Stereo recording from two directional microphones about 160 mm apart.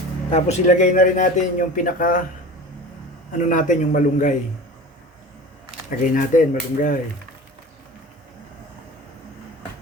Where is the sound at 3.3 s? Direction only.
50° left (ahead or behind).